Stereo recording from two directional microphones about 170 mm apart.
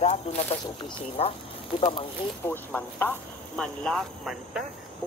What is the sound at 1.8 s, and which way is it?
Speech, 35° left (ahead or behind).